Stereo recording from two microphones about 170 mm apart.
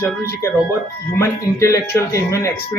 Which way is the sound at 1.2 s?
20° left (ahead or behind).